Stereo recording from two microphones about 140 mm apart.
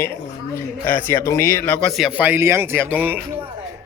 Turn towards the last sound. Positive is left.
turn(degrees=-15)  # may be behind; listen again after turning